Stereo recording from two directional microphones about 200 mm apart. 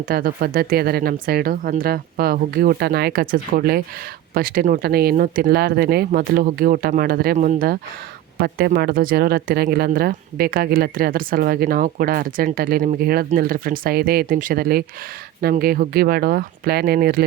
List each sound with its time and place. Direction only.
0.1 s speech: 50° right (ahead or behind)